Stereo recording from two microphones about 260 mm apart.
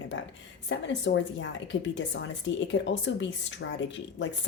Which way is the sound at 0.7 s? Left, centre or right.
Left.